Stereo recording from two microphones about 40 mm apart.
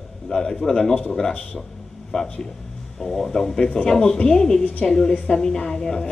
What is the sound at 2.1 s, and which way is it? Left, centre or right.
Speech, centre.